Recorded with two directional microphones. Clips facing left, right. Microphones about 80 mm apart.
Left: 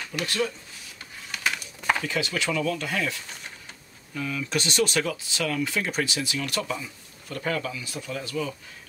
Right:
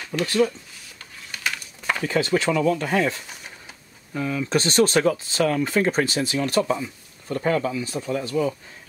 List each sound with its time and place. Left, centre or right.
0.1 s speech: right
2.0 s speech: right